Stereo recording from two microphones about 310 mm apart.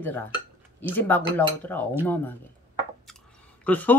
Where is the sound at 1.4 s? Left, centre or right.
Centre.